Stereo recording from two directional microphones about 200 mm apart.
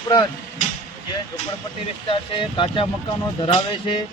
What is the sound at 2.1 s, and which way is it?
Speech, 25° left (ahead or behind).